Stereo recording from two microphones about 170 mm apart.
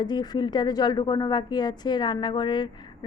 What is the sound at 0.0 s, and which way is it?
A woman's voice, 25° left (ahead or behind).